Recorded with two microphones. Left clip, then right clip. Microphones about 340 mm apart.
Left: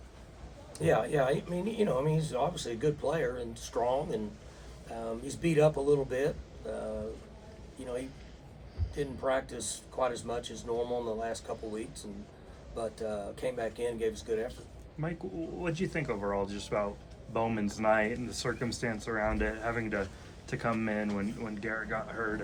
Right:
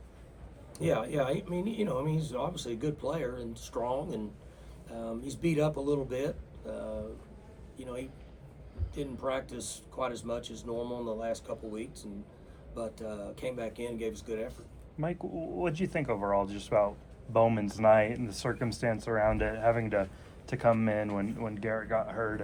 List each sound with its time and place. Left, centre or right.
0.8 s speech: centre
9.0 s speech: centre
15.6 s speech: right